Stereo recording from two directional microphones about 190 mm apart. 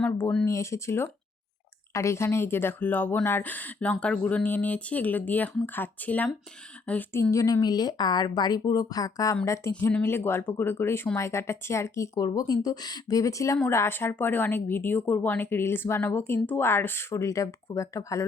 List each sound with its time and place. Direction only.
0.0 s a woman's voice: 10° left (ahead or behind)